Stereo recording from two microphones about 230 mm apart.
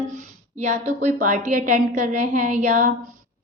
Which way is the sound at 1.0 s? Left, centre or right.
Right.